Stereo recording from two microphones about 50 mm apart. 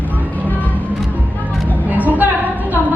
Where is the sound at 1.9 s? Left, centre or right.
Right.